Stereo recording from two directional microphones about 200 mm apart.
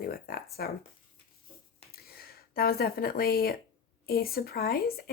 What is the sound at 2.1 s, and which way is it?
Speech, 50° left (ahead or behind).